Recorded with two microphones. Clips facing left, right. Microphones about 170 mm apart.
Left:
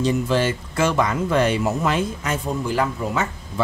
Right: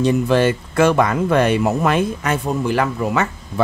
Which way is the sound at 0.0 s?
60° right (ahead or behind).